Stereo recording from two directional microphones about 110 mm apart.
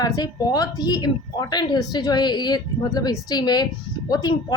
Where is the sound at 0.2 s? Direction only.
35° left (ahead or behind).